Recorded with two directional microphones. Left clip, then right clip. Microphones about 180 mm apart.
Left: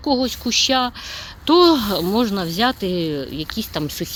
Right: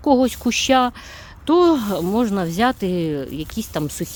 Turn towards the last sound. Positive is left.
turn(degrees=-35)  # may be behind; listen again after turning